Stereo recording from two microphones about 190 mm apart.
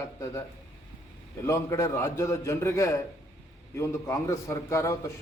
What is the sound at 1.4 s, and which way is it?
A man's voice, 15° left (ahead or behind).